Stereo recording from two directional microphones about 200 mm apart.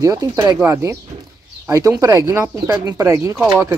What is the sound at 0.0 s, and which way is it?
Speech, 15° right (ahead or behind).